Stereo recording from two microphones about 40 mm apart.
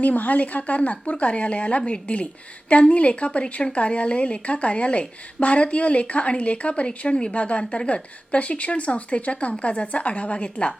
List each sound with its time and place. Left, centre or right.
0.0 s speech: left